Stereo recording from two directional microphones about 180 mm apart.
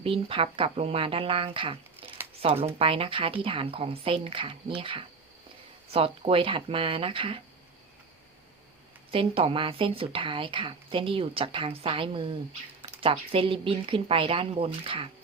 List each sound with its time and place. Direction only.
0.0 s a woman's voice: 30° right (ahead or behind)
9.1 s a woman's voice: 30° right (ahead or behind)